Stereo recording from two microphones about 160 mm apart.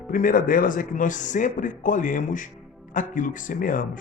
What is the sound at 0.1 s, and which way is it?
A man's voice, 60° left (ahead or behind).